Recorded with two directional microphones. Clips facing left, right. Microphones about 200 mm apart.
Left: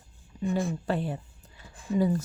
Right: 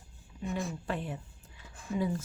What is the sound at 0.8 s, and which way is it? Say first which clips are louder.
Speech: left 6 dB; 35° left (ahead or behind).